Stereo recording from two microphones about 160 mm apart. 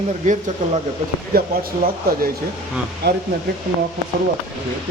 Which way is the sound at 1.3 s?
65° right (ahead or behind).